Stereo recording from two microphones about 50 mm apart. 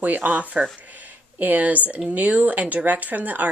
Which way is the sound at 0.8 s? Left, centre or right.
Right.